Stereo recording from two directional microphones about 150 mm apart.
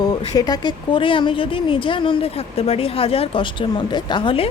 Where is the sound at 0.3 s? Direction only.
25° left (ahead or behind).